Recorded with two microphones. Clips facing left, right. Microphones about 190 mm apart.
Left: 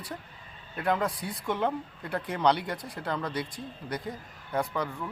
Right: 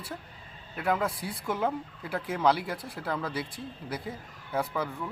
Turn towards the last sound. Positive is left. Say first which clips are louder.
# even
turn(degrees=-5)  # may be behind; listen again after turning